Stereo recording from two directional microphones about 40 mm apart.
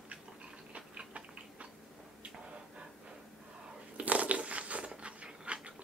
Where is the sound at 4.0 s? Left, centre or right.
Right.